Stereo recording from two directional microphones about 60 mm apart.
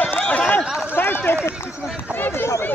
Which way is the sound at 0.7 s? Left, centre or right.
Centre.